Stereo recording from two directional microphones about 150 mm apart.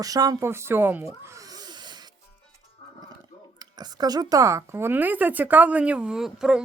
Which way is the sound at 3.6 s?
25° right (ahead or behind).